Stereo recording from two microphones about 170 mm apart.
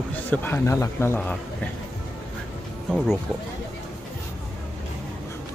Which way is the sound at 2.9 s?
5° right (ahead or behind).